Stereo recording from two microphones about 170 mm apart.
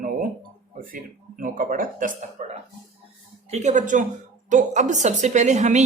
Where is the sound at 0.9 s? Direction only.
55° right (ahead or behind).